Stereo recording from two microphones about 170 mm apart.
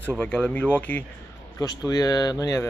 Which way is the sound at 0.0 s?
10° left (ahead or behind).